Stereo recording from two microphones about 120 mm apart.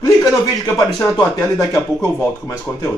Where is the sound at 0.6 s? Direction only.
25° left (ahead or behind).